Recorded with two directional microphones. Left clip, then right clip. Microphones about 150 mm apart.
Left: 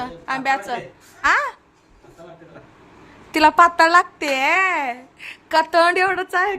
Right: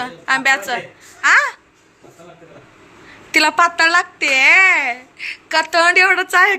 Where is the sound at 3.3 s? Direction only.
15° left (ahead or behind).